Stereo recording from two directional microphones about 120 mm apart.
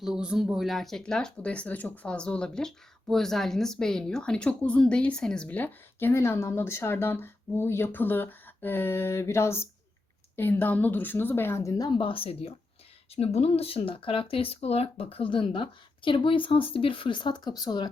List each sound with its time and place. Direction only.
0.0 s a woman's voice: 5° right (ahead or behind); by 17.8 s 35° left (ahead or behind)